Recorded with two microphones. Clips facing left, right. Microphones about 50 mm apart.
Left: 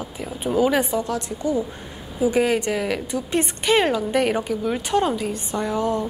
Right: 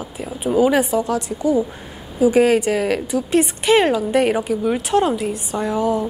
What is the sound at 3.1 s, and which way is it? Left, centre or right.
Speech, centre.